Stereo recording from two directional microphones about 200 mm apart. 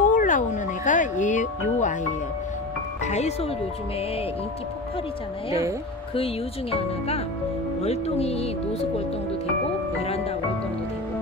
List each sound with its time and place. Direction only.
0.0 s speech: 40° left (ahead or behind)
3.0 s speech: 35° left (ahead or behind)
6.1 s speech: 30° left (ahead or behind)
10.0 s speech: 30° left (ahead or behind)